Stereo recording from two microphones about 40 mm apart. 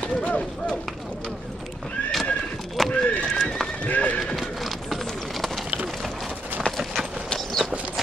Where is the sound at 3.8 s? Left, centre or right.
Left.